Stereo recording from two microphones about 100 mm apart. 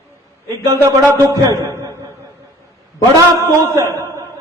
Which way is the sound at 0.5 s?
35° right (ahead or behind).